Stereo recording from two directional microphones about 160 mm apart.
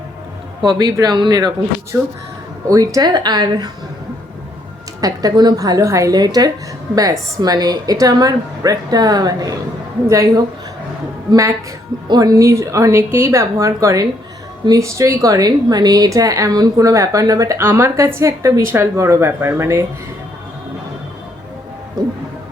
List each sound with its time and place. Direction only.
0.8 s a woman's voice: 25° right (ahead or behind)
4.9 s a woman's voice: 25° right (ahead or behind)